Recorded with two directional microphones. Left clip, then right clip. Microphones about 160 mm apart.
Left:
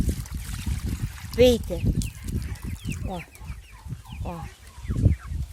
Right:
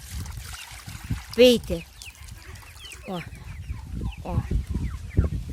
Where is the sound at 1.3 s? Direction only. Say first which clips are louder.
Right 2 dB; 25° right (ahead or behind).